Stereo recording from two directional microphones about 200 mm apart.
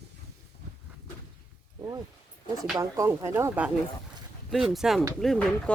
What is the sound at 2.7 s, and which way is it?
Speech, 15° right (ahead or behind).